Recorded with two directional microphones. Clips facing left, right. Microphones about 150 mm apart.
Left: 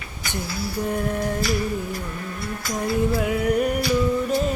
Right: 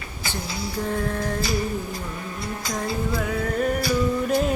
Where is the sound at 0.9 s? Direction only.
20° left (ahead or behind).